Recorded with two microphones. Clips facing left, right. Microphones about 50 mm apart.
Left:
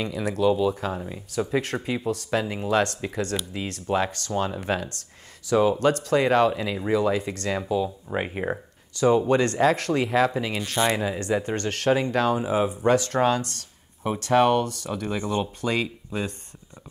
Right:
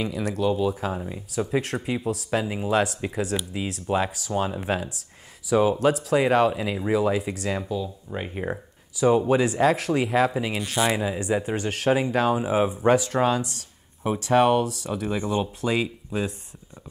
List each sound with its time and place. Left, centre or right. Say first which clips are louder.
0.0 s speech: left 2 dB; centre
7.8 s speech: left 4 dB; left
8.5 s speech: left 1 dB; centre
13.0 s speech: even; centre